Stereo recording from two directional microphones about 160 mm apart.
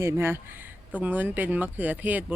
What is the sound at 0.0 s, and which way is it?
Speech, 15° right (ahead or behind).